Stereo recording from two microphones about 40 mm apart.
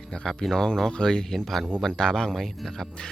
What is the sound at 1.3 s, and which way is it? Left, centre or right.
Speech, centre.